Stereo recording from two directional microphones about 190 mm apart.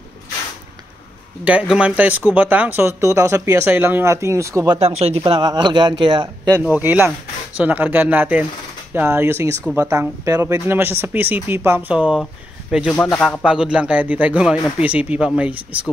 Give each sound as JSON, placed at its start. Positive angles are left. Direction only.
{"t": 1.4, "sound": "speech", "side_deg": -5}
{"t": 4.7, "sound": "a man's voice", "side_deg": -30}
{"t": 6.6, "sound": "speech", "side_deg": -10}